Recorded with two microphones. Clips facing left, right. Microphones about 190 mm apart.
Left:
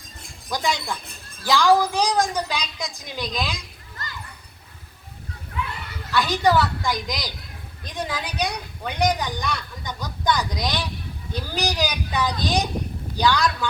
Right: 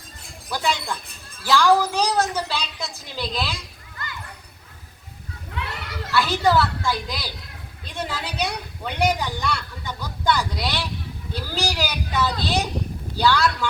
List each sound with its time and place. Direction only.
0.5 s a woman's voice: 15° left (ahead or behind)
5.5 s children playing: 75° right (ahead or behind)
6.1 s a woman's voice: 15° left (ahead or behind)